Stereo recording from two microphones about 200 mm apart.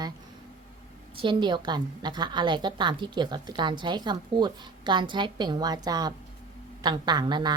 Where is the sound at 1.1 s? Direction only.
25° right (ahead or behind).